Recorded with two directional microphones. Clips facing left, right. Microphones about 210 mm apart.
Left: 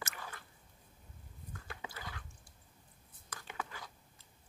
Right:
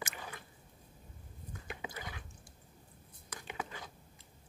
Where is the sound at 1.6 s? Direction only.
20° right (ahead or behind).